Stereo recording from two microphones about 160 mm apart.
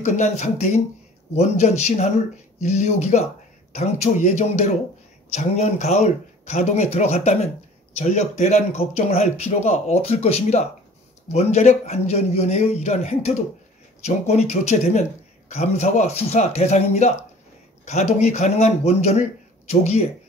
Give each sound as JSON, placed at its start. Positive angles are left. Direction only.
{"t": 0.0, "sound": "speech", "side_deg": 50}